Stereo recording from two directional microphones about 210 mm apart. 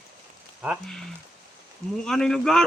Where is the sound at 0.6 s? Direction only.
Centre (ahead or behind).